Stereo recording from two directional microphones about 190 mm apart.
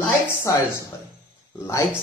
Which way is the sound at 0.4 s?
15° left (ahead or behind).